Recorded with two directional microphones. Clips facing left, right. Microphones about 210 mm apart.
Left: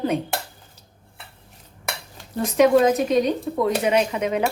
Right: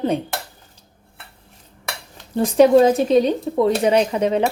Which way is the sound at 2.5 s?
30° right (ahead or behind).